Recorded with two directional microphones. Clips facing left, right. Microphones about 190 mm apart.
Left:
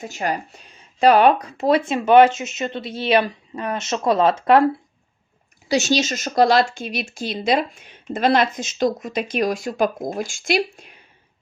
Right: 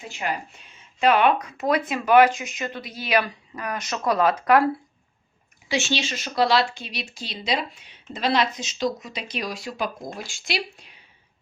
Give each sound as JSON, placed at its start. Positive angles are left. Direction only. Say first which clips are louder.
{"t": 0.0, "sound": "speech", "louder": "left 5 dB", "side_deg": 40}
{"t": 5.6, "sound": "speech", "louder": "left 6 dB", "side_deg": 40}